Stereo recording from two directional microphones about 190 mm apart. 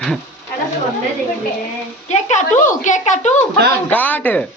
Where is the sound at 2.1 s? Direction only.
40° left (ahead or behind).